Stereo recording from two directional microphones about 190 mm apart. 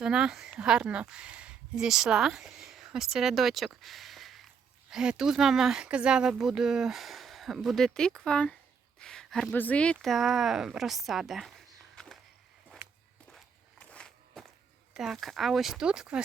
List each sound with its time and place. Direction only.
0.0 s speech: 5° right (ahead or behind)
13.3 s walk: 5° left (ahead or behind)
14.9 s speech: centre (ahead or behind)